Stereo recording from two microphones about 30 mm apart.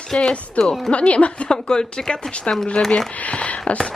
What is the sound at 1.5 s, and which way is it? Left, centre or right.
Speech, left.